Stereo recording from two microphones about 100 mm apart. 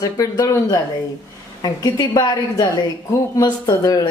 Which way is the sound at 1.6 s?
45° left (ahead or behind).